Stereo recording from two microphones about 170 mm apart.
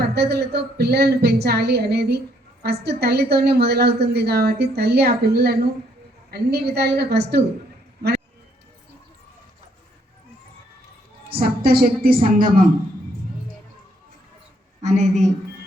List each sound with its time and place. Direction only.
0.0 s a woman's voice: 70° right (ahead or behind)
11.3 s a woman's voice: 60° right (ahead or behind)
14.8 s a woman's voice: 45° right (ahead or behind)